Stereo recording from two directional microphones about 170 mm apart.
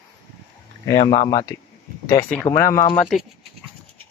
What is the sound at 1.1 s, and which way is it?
A man's voice, 30° left (ahead or behind).